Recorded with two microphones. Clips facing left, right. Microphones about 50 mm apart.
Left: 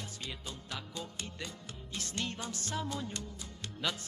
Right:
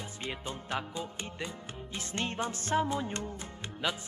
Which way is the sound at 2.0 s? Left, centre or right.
Right.